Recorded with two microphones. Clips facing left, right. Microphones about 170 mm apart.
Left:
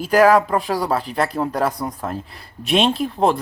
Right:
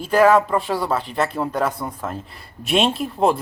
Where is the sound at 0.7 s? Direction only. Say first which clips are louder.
Left 1 dB; 35° left (ahead or behind).